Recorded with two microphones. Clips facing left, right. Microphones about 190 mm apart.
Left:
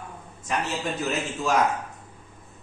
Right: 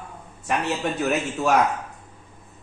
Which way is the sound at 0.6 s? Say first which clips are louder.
Right 3 dB; 65° right (ahead or behind).